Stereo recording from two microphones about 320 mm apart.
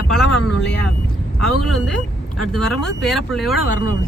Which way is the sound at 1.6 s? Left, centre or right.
Centre.